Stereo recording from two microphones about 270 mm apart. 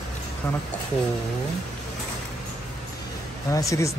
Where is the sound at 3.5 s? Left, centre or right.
Centre.